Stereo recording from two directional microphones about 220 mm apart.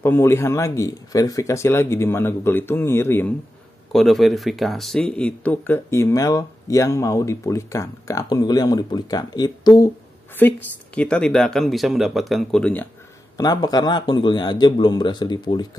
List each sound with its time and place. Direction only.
0.0 s speech: 10° left (ahead or behind)
13.4 s speech: 20° left (ahead or behind)